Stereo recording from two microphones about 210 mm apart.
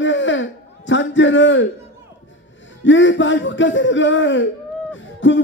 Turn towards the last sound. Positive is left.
turn(degrees=60)  # may be behind; listen again after turning